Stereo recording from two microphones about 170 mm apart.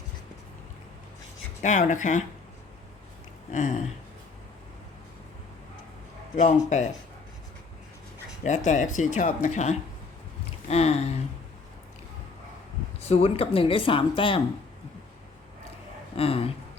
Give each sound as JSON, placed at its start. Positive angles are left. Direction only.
{"t": 1.6, "sound": "speech", "side_deg": 45}
{"t": 3.5, "sound": "speech", "side_deg": 45}
{"t": 6.3, "sound": "speech", "side_deg": 45}
{"t": 8.4, "sound": "speech", "side_deg": 45}
{"t": 13.1, "sound": "speech", "side_deg": 35}
{"t": 16.1, "sound": "speech", "side_deg": 35}